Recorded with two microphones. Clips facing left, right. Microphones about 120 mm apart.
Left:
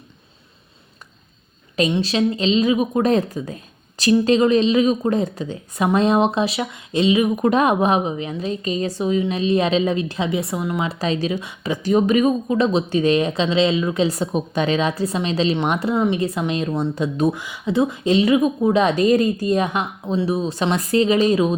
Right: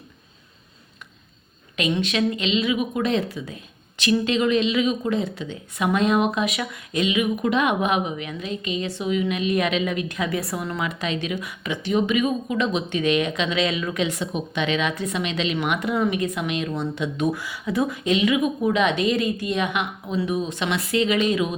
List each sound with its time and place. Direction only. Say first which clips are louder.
1.7 s a woman's voice: left 4 dB; 35° left (ahead or behind)
10.8 s speech: left 5 dB; 35° left (ahead or behind)
17.3 s speech: left 4 dB; 20° left (ahead or behind)